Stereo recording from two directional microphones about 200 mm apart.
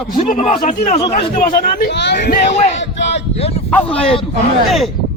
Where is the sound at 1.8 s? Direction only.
60° left (ahead or behind).